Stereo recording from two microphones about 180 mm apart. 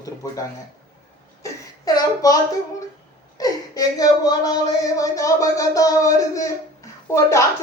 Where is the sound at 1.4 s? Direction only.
20° left (ahead or behind).